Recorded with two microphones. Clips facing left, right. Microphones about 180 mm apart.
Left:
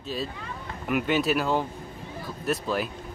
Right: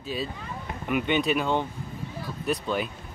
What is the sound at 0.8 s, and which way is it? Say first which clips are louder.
Speech: even; centre (ahead or behind).